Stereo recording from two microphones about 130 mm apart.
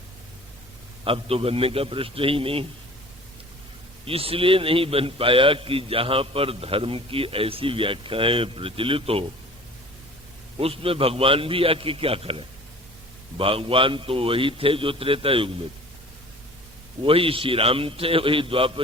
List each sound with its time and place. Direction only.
1.0 s a man's voice: 45° right (ahead or behind)
4.0 s a man's voice: 45° right (ahead or behind)
10.6 s a man's voice: 45° right (ahead or behind)
17.0 s a man's voice: 45° right (ahead or behind)